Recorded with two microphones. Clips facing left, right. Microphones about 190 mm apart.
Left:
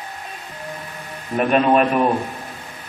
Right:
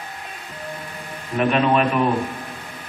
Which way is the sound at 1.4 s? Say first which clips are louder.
Left 2 dB; 45° left (ahead or behind).